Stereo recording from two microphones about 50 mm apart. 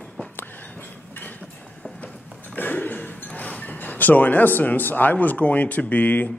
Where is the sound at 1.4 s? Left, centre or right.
Left.